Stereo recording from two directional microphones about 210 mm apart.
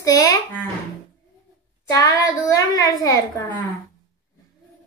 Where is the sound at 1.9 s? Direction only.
15° left (ahead or behind).